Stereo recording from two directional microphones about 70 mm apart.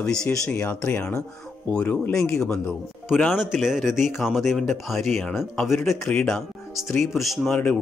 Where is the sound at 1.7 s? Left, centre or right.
Centre.